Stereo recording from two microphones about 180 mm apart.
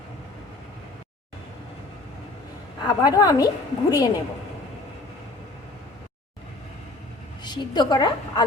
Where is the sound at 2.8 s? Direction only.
20° left (ahead or behind).